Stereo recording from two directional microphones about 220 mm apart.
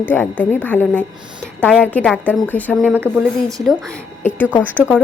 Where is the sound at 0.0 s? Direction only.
10° left (ahead or behind).